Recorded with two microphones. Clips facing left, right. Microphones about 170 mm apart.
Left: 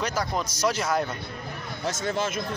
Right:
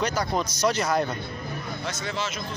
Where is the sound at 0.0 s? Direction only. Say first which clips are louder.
Right 2 dB; 5° left (ahead or behind).